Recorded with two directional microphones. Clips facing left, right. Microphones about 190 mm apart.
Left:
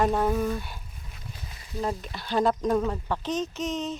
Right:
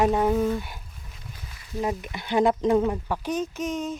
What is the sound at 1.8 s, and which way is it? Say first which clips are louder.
Speech: right 2 dB; 15° right (ahead or behind).